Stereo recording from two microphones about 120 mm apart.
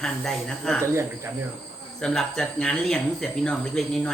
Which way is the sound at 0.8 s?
20° right (ahead or behind).